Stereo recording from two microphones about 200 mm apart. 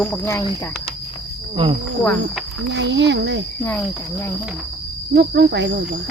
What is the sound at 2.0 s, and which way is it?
Cricket, 5° left (ahead or behind).